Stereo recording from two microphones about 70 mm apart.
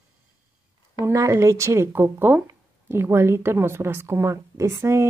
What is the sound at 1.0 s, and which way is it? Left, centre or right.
A woman's voice, right.